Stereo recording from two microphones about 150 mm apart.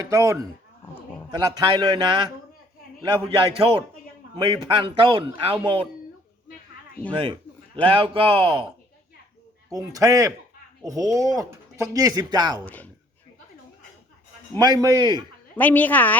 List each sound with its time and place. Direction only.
0.0 s a man's voice: 20° right (ahead or behind)
7.8 s a man's voice: 35° right (ahead or behind)
9.9 s speech: 25° right (ahead or behind)
12.6 s a woman's voice: 10° left (ahead or behind)
14.5 s speech: 25° right (ahead or behind)
15.5 s a woman's voice: 10° left (ahead or behind)